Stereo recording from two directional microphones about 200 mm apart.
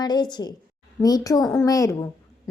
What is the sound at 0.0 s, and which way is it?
A woman's voice, 20° left (ahead or behind).